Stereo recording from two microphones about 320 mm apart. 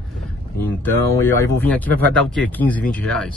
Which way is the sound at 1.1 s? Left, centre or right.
Centre.